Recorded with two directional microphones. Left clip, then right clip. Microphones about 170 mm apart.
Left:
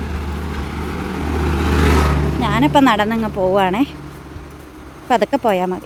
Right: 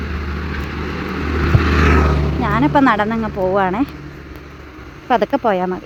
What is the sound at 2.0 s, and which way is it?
Vehicle, 30° right (ahead or behind).